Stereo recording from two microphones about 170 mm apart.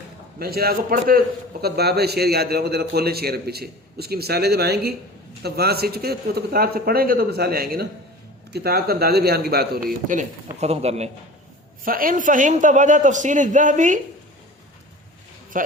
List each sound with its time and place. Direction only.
0.3 s speech: 65° right (ahead or behind)
1.6 s a man's voice: 70° right (ahead or behind)
10.6 s a man's voice: 40° right (ahead or behind)
11.9 s a man's voice: 55° right (ahead or behind)
15.5 s speech: 50° right (ahead or behind)